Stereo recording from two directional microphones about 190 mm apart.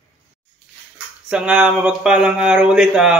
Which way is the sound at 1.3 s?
5° right (ahead or behind).